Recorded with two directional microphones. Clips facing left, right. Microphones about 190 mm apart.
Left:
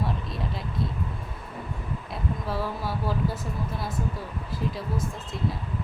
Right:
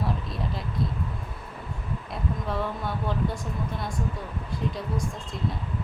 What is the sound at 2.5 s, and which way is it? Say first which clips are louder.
Speech: even; 5° left (ahead or behind).